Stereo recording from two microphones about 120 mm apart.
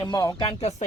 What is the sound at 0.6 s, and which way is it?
Speech, 65° left (ahead or behind).